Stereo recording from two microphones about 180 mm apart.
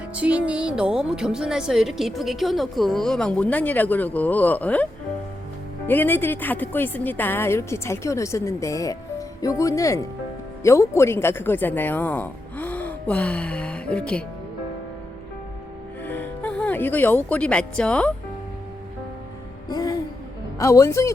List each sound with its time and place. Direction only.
0.1 s a woman's voice: 5° right (ahead or behind); by 4.9 s 10° left (ahead or behind)
5.9 s a woman's voice: 10° left (ahead or behind)
16.0 s speech: 10° left (ahead or behind)
19.6 s music: 20° left (ahead or behind)
20.6 s a woman's voice: 15° left (ahead or behind)